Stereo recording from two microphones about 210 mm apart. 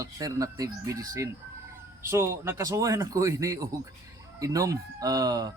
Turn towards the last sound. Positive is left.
turn(degrees=-15)  # may be behind; listen again after turning